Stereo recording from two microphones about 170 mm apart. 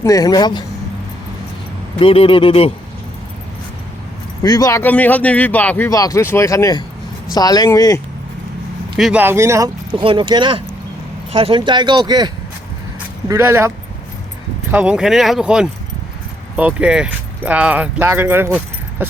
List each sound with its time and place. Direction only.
0.0 s speech: 20° left (ahead or behind)
2.0 s speech: 30° left (ahead or behind)
4.4 s speech: 20° left (ahead or behind)
4.8 s speech: 10° left (ahead or behind)
9.0 s speech: centre (ahead or behind)
9.2 s speech: 15° right (ahead or behind)
10.0 s speech: 30° right (ahead or behind); by 19.0 s 10° right (ahead or behind)